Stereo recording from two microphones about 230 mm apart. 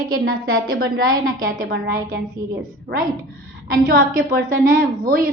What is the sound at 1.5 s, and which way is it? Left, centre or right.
A woman's voice, right.